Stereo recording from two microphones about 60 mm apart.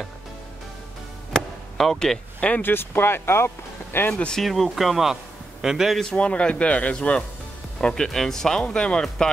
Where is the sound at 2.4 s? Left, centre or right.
Left.